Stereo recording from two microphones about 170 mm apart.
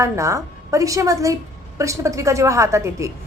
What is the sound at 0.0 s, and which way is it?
A woman's voice, 20° right (ahead or behind).